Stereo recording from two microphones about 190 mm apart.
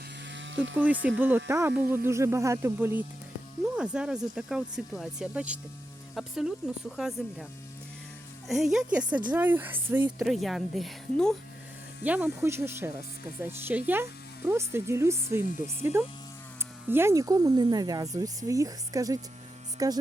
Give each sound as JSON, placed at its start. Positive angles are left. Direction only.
{"t": 0.3, "sound": "a sound", "side_deg": -75}
{"t": 1.5, "sound": "speech", "side_deg": -10}
{"t": 8.4, "sound": "speech", "side_deg": 0}
{"t": 10.2, "sound": "speech", "side_deg": 0}